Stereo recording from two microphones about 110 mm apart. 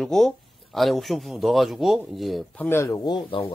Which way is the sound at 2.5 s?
15° left (ahead or behind).